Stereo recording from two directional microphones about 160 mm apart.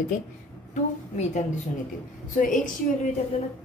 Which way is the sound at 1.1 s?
45° left (ahead or behind).